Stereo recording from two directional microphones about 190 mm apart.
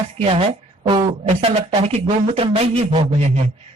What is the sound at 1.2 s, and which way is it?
Speech, 35° right (ahead or behind).